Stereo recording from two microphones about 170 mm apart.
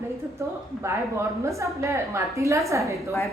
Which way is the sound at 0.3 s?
15° right (ahead or behind).